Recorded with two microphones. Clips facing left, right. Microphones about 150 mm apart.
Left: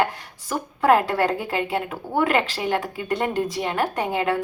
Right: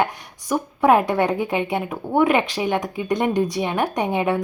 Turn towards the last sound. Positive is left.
turn(degrees=-15)  # may be behind; listen again after turning